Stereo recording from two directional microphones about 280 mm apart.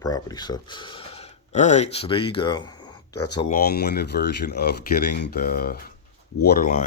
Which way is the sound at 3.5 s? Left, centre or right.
Left.